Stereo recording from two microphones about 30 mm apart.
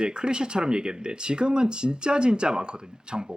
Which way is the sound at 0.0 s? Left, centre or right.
Right.